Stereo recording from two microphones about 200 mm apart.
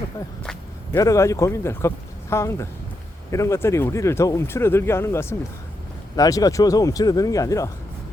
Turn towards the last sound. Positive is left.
turn(degrees=15)  # may be behind; listen again after turning